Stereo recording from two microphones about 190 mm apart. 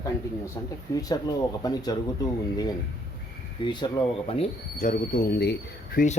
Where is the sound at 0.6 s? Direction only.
15° left (ahead or behind).